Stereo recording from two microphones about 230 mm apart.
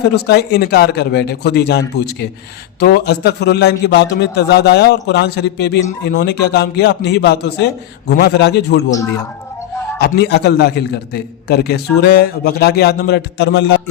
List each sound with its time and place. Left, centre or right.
0.1 s a man's voice: left
8.9 s speech: centre
10.0 s a man's voice: left